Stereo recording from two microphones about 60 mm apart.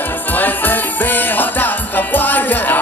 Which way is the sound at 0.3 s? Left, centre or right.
Left.